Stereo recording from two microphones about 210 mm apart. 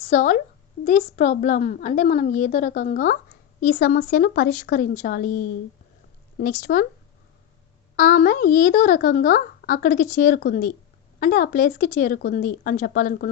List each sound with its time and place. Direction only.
0.0 s a woman's voice: 35° left (ahead or behind)
6.4 s speech: 40° left (ahead or behind)
7.9 s speech: 40° left (ahead or behind)